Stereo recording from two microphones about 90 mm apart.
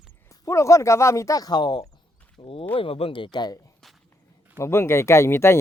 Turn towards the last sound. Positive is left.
turn(degrees=30)  # may be behind; listen again after turning